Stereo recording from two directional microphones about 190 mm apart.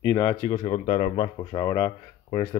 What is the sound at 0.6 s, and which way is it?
Speech, 30° left (ahead or behind).